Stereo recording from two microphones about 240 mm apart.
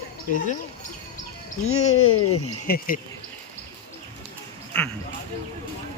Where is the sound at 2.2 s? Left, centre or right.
Left.